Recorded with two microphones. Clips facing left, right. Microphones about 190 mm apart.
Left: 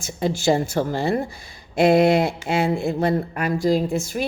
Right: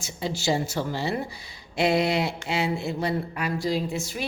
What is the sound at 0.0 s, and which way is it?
Speech, 50° left (ahead or behind).